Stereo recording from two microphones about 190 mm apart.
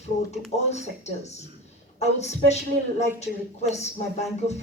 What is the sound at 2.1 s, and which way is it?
Speech, 35° left (ahead or behind).